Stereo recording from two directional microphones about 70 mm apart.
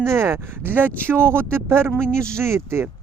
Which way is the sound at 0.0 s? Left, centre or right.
Right.